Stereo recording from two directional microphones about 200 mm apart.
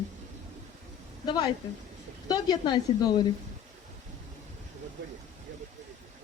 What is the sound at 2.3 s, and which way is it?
Speech, 20° left (ahead or behind).